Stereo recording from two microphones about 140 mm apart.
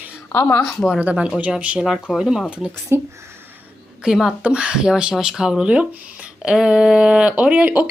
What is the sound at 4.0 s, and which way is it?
Speech, 5° right (ahead or behind).